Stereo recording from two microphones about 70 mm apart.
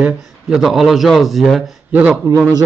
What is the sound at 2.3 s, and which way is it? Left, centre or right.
Speech, right.